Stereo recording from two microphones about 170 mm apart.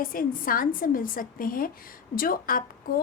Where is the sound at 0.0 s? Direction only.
55° left (ahead or behind).